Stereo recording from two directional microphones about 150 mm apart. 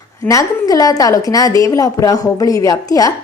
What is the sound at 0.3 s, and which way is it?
A woman's voice, 25° left (ahead or behind).